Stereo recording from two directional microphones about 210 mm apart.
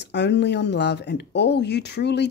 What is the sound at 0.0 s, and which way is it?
Speech, 55° left (ahead or behind).